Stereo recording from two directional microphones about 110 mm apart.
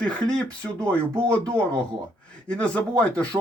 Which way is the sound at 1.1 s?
25° right (ahead or behind).